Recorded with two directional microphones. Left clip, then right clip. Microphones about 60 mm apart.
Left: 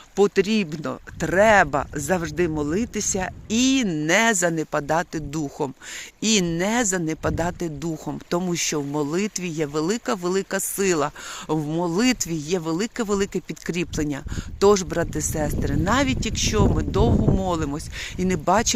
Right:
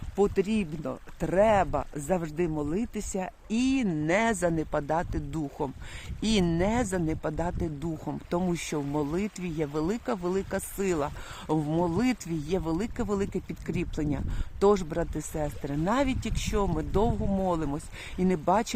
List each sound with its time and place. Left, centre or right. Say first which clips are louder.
0.2 s speech: left 7 dB; left
0.5 s speech: left 7 dB; left
2.2 s speech: left 6 dB; left
6.1 s speech: left 5 dB; centre
7.2 s speech: left 7 dB; left
7.6 s speech: left 5 dB; centre
16.0 s speech: left 6 dB; centre
18.4 s speech: left 6 dB; left